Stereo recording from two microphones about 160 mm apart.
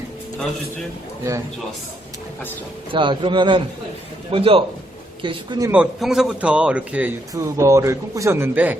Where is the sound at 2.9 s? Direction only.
30° right (ahead or behind).